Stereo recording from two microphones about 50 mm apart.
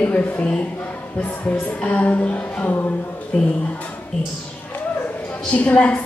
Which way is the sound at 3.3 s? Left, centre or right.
Left.